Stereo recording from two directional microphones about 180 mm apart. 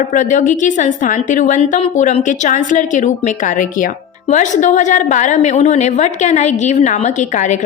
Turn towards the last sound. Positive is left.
turn(degrees=40)  # may be behind; listen again after turning